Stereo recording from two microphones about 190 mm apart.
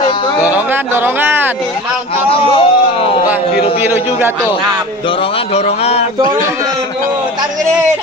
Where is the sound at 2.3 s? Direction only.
30° left (ahead or behind).